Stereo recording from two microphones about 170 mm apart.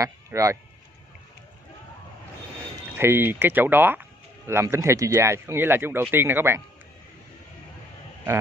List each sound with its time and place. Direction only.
0.0 s speech: 20° right (ahead or behind)
3.0 s speech: 15° right (ahead or behind)